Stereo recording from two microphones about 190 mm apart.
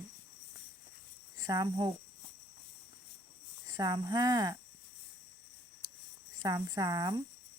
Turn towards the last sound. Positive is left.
turn(degrees=-20)  # may be behind; listen again after turning